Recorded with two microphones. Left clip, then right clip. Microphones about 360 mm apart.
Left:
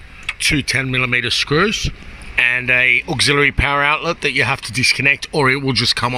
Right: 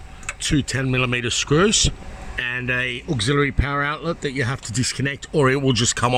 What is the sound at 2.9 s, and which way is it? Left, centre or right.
Speech, left.